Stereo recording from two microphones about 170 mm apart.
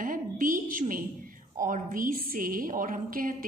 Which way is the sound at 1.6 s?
50° right (ahead or behind).